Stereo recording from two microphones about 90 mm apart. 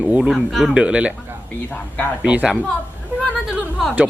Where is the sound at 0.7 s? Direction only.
15° right (ahead or behind).